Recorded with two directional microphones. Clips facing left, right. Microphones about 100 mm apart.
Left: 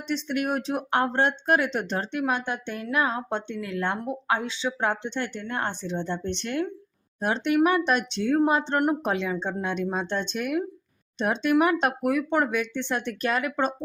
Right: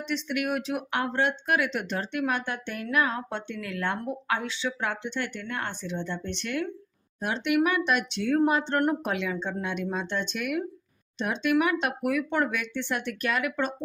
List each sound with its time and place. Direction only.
0.1 s speech: 35° left (ahead or behind); by 9.0 s 20° left (ahead or behind)
9.0 s speech: 30° left (ahead or behind)